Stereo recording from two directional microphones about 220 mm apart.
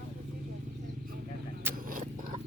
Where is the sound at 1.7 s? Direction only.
10° right (ahead or behind).